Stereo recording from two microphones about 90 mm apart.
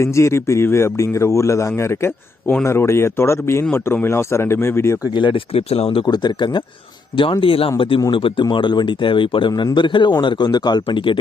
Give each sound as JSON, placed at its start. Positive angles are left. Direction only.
{"t": 0.0, "sound": "speech", "side_deg": 35}
{"t": 5.1, "sound": "speech", "side_deg": 65}
{"t": 6.1, "sound": "speech", "side_deg": 55}
{"t": 7.2, "sound": "speech", "side_deg": 70}
{"t": 7.8, "sound": "speech", "side_deg": 75}
{"t": 8.4, "sound": "speech", "side_deg": 55}
{"t": 9.5, "sound": "a man's voice", "side_deg": 45}
{"t": 9.7, "sound": "speech", "side_deg": 60}